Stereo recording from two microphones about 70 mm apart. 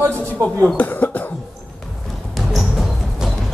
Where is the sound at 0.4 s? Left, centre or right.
Right.